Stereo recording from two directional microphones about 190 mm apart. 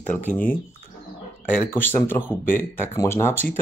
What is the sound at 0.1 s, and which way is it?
Speech, 45° left (ahead or behind).